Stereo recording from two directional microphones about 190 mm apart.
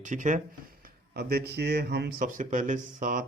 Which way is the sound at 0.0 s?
40° right (ahead or behind).